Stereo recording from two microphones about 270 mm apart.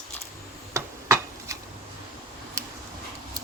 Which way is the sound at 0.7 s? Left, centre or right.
Centre.